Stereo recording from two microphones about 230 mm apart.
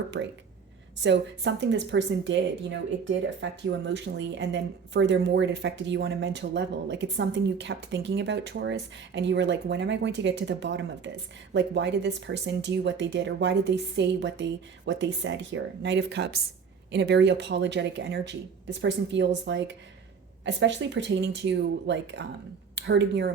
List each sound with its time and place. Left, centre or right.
0.1 s speech: right